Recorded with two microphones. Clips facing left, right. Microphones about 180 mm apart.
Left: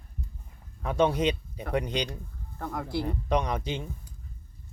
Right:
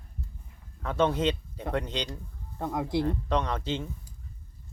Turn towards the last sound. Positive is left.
turn(degrees=15)  # may be behind; listen again after turning